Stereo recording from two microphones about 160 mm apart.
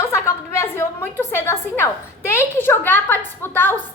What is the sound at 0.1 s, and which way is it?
A woman's voice, 15° left (ahead or behind).